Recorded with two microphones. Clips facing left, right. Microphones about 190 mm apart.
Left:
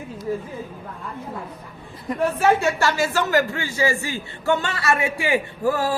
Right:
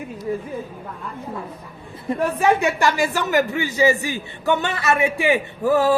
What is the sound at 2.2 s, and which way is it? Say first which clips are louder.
A man's voice: even; 15° right (ahead or behind).